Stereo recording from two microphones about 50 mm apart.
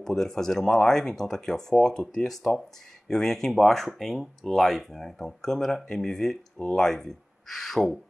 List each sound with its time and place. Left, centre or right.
0.0 s speech: centre